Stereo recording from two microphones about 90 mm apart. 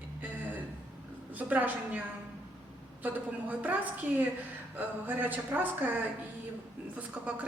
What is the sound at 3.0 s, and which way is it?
Speech, 20° right (ahead or behind).